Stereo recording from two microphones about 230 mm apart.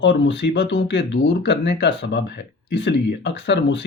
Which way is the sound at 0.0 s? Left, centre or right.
Left.